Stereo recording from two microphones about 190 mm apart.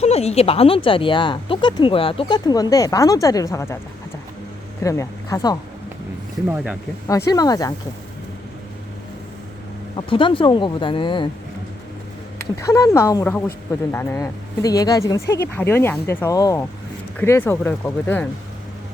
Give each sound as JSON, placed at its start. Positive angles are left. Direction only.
{"t": 0.0, "sound": "speech", "side_deg": 35}
{"t": 4.8, "sound": "speech", "side_deg": 15}
{"t": 7.3, "sound": "speech", "side_deg": 20}
{"t": 9.9, "sound": "speech", "side_deg": 25}
{"t": 12.5, "sound": "speech", "side_deg": 15}